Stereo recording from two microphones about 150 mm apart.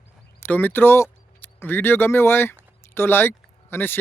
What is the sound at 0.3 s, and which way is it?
Speech, 15° left (ahead or behind).